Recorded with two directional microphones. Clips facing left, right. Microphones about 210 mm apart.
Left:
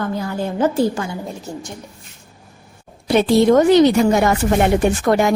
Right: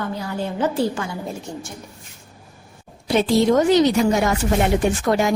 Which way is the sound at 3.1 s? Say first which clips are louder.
Left 4 dB; 60° left (ahead or behind).